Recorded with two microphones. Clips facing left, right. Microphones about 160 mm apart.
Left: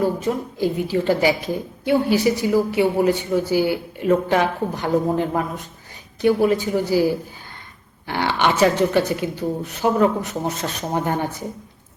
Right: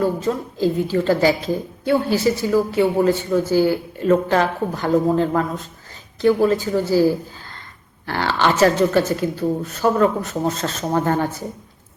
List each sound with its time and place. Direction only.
0.0 s speech: 15° left (ahead or behind)